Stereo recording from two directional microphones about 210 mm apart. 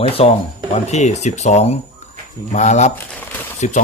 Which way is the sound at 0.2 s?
30° left (ahead or behind).